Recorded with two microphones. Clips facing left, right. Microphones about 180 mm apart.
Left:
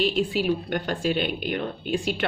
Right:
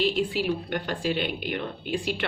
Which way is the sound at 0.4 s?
45° left (ahead or behind).